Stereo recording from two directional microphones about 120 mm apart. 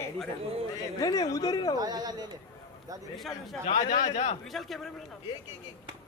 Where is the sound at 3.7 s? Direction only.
90° left.